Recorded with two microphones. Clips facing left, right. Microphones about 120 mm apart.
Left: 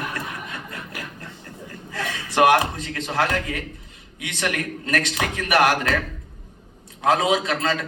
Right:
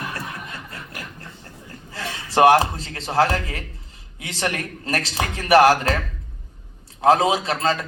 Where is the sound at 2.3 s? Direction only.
30° right (ahead or behind).